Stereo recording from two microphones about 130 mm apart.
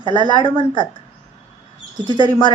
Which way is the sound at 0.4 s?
40° left (ahead or behind).